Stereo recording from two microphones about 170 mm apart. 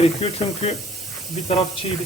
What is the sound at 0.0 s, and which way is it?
Speech, 35° left (ahead or behind).